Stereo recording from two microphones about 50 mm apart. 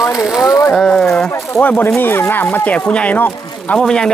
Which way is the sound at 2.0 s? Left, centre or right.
Left.